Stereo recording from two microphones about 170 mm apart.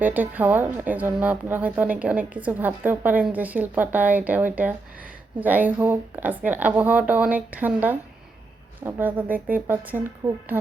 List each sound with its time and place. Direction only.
0.0 s a woman's voice: 10° right (ahead or behind)
10.2 s a woman's voice: 30° right (ahead or behind)